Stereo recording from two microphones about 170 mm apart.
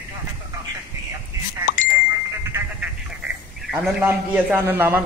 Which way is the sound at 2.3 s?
15° right (ahead or behind).